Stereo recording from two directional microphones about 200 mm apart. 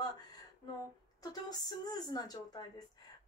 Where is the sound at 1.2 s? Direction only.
20° left (ahead or behind).